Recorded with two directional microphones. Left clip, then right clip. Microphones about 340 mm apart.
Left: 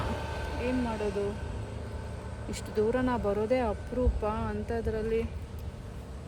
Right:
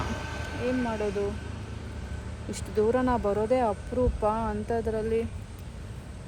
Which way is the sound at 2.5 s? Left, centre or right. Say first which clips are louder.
Right 3 dB; centre.